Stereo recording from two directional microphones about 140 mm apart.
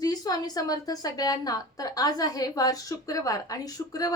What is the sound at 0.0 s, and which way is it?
A woman's voice, 25° left (ahead or behind).